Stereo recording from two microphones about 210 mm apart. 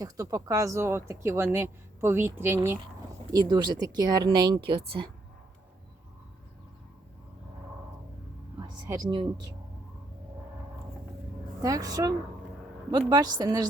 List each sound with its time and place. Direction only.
0.0 s speech: 15° right (ahead or behind)
8.5 s a sound: 20° right (ahead or behind)
11.6 s speech: 15° right (ahead or behind)